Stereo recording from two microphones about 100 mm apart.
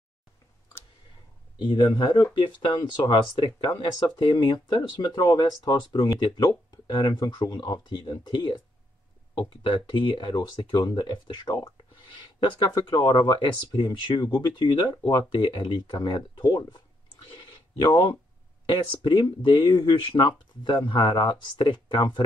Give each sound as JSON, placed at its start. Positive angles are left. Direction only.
{"t": 1.6, "sound": "speech", "side_deg": 50}
{"t": 9.8, "sound": "speech", "side_deg": 60}
{"t": 11.7, "sound": "speech", "side_deg": 55}
{"t": 16.4, "sound": "speech", "side_deg": 35}
{"t": 17.4, "sound": "a sound", "side_deg": 55}
{"t": 18.7, "sound": "speech", "side_deg": 50}
{"t": 20.0, "sound": "speech", "side_deg": 55}